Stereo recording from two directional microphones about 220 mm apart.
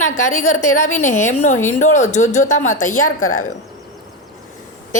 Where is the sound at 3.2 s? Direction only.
70° left (ahead or behind).